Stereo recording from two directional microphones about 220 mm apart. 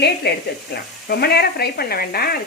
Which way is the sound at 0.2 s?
45° left (ahead or behind).